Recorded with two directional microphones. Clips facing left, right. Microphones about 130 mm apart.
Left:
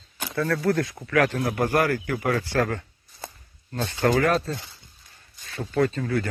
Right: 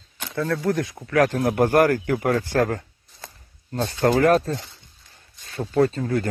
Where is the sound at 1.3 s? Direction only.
45° right (ahead or behind).